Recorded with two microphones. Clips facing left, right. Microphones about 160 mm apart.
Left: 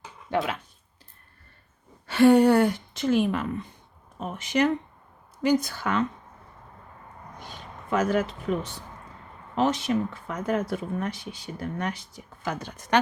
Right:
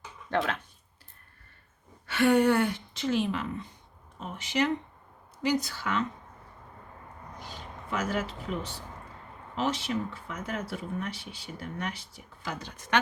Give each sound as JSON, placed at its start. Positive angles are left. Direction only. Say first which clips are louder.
{"t": 0.3, "sound": "speech", "louder": "left 2 dB", "side_deg": 10}
{"t": 2.0, "sound": "speech", "louder": "left 6 dB", "side_deg": 35}
{"t": 7.9, "sound": "speech", "louder": "left 7 dB", "side_deg": 50}
{"t": 12.5, "sound": "speech", "louder": "left 5 dB", "side_deg": 50}